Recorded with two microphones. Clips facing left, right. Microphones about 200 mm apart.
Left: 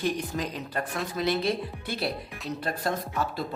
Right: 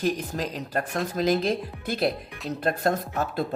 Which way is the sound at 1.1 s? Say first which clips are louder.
Right 3 dB; 40° right (ahead or behind).